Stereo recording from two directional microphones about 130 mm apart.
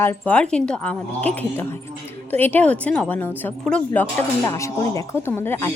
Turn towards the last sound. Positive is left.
turn(degrees=20)  # may be behind; listen again after turning